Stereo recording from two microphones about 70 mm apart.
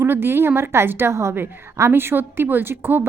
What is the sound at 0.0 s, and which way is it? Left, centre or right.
A woman's voice, right.